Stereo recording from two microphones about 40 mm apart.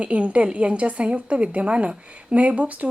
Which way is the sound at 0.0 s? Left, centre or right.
Right.